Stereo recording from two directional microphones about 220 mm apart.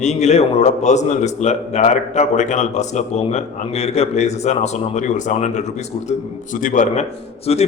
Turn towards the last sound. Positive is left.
turn(degrees=30)  # may be behind; listen again after turning